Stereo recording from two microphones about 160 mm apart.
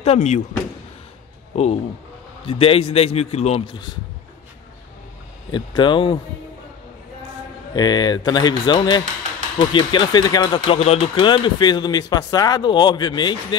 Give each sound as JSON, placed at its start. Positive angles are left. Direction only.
{"t": 0.0, "sound": "speech", "side_deg": 45}
{"t": 1.5, "sound": "a man's voice", "side_deg": 40}
{"t": 5.5, "sound": "speech", "side_deg": 30}
{"t": 7.7, "sound": "speech", "side_deg": 25}
{"t": 10.8, "sound": "speech", "side_deg": 40}